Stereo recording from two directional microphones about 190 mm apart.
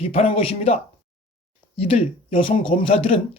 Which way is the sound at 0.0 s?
30° left (ahead or behind).